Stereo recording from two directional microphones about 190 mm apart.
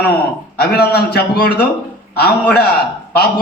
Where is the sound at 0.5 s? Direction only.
55° left (ahead or behind).